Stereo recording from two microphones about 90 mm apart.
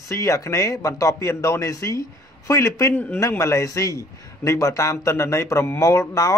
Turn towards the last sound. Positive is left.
turn(degrees=35)  # may be behind; listen again after turning